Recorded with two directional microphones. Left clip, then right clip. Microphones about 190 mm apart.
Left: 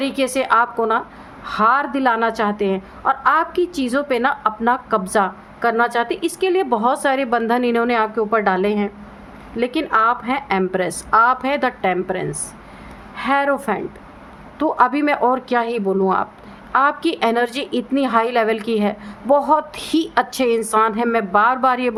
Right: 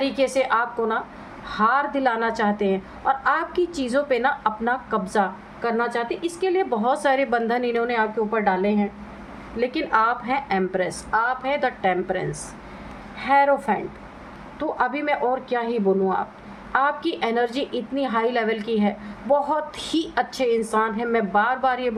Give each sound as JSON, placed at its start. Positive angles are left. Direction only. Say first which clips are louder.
{"t": 0.0, "sound": "a woman's voice", "louder": "left 1 dB", "side_deg": 30}
{"t": 9.6, "sound": "a woman's voice", "louder": "left 3 dB", "side_deg": 25}